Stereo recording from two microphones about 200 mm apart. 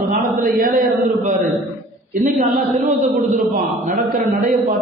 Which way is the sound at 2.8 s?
35° right (ahead or behind).